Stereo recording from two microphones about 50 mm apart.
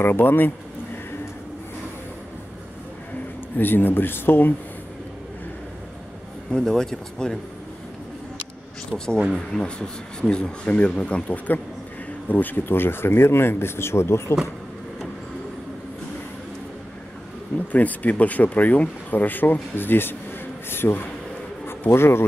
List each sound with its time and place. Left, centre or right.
0.0 s speech: left
3.5 s speech: left
6.5 s speech: centre
8.9 s speech: centre; by 14.3 s left
17.6 s a man's voice: left